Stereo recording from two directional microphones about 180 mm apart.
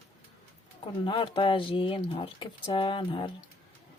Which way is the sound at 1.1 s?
30° left (ahead or behind).